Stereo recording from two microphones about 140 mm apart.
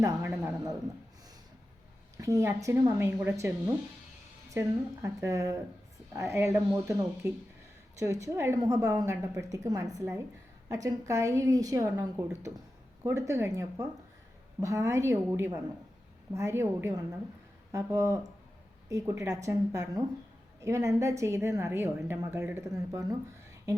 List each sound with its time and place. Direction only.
0.4 s a man's voice: 25° right (ahead or behind)
2.2 s a woman's voice: 20° right (ahead or behind)
5.0 s a woman's voice: 20° right (ahead or behind)